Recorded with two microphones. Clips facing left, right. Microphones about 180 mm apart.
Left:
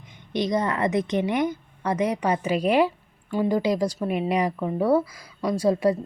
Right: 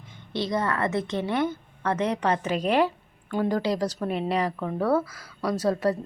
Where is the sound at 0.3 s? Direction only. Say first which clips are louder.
Left 3 dB; 15° left (ahead or behind).